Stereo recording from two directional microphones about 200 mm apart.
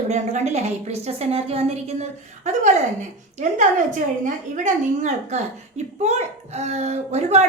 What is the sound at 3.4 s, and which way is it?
A woman's voice, 40° right (ahead or behind).